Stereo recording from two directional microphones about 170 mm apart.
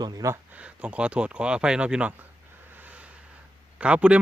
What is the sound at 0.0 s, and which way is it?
Speech, 20° right (ahead or behind).